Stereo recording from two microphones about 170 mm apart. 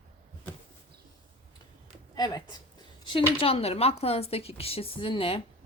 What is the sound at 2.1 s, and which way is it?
Speech, 25° left (ahead or behind).